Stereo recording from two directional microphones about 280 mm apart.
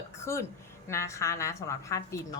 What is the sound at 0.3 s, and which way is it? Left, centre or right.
A woman's voice, centre.